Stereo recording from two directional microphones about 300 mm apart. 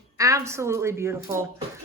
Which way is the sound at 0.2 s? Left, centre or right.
Centre.